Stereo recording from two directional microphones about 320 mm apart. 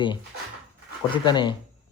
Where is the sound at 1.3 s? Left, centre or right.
Centre.